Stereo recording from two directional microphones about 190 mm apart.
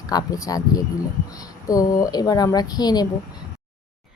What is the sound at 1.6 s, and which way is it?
A woman's voice, 20° left (ahead or behind).